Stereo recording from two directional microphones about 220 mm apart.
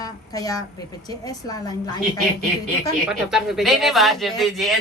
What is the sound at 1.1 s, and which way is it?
Speech, 15° left (ahead or behind).